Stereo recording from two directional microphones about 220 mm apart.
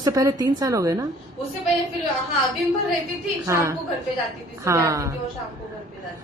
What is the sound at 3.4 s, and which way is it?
A woman's voice, 15° right (ahead or behind).